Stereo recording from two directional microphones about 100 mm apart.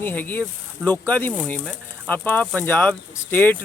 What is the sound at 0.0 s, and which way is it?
Speech, 20° left (ahead or behind).